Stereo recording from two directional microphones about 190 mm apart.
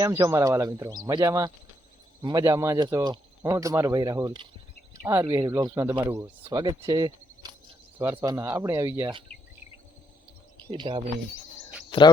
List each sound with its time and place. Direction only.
0.0 s speech: 15° right (ahead or behind)
10.7 s speech: 25° right (ahead or behind)
11.9 s a sound: 25° left (ahead or behind)